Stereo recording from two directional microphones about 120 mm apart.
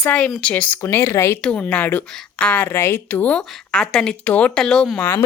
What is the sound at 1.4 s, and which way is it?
A woman's voice, 10° left (ahead or behind).